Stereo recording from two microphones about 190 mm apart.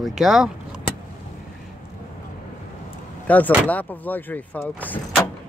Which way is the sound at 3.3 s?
10° left (ahead or behind).